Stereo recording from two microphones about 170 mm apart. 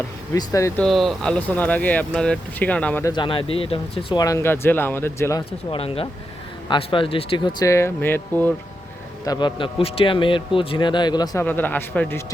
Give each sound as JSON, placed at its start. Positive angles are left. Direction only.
{"t": 0.3, "sound": "speech", "side_deg": 20}
{"t": 0.8, "sound": "speech", "side_deg": 0}
{"t": 3.0, "sound": "speech", "side_deg": 25}
{"t": 4.2, "sound": "speech", "side_deg": 20}
{"t": 5.5, "sound": "speech", "side_deg": 35}
{"t": 9.2, "sound": "speech", "side_deg": 25}
{"t": 11.4, "sound": "speech", "side_deg": 10}